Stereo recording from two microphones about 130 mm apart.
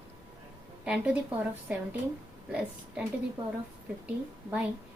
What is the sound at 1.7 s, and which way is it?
Speech, 10° right (ahead or behind).